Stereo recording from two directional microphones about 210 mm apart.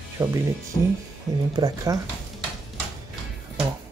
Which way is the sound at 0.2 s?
15° right (ahead or behind).